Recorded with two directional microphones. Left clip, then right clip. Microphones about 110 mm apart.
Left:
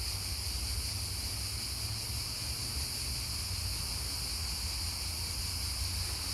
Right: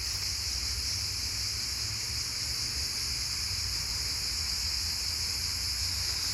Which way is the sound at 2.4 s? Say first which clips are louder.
Right 5 dB; 20° left (ahead or behind).